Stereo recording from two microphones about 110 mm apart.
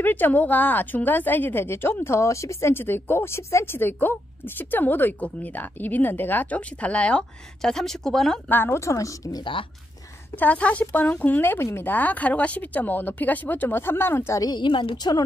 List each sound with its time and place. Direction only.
0.0 s a woman's voice: 15° left (ahead or behind)
8.5 s a woman's voice: 20° left (ahead or behind)
9.4 s a woman's voice: 50° left (ahead or behind)
10.3 s a woman's voice: 15° left (ahead or behind)
14.5 s a woman's voice: 45° left (ahead or behind)